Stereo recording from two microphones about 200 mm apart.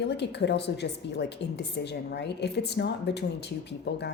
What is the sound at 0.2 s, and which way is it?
A woman's voice, 60° left (ahead or behind).